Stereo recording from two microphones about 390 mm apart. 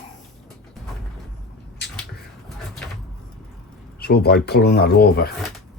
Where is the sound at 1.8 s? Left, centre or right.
Left.